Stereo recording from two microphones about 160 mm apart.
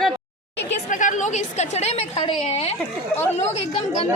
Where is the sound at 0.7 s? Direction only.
50° left (ahead or behind).